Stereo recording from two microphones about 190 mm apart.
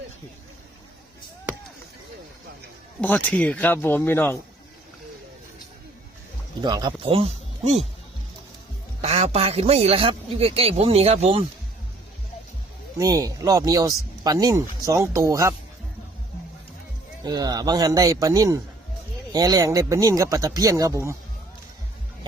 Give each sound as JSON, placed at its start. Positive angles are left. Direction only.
{"t": 3.0, "sound": "speech", "side_deg": 10}
{"t": 6.6, "sound": "speech", "side_deg": -20}
{"t": 9.0, "sound": "a man's voice", "side_deg": -30}
{"t": 13.0, "sound": "speech", "side_deg": -15}
{"t": 17.2, "sound": "speech", "side_deg": -20}